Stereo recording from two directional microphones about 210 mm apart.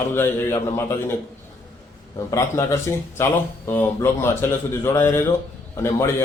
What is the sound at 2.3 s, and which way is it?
A man's voice, 15° left (ahead or behind).